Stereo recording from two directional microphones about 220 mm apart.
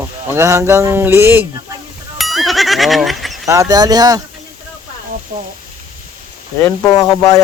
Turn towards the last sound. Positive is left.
turn(degrees=15)  # may be behind; listen again after turning